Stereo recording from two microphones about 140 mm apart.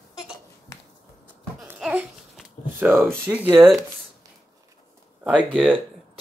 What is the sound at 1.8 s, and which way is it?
Babbling, 5° right (ahead or behind).